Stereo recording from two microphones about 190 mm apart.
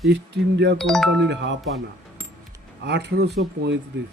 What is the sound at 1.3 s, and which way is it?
Speech, 70° right (ahead or behind).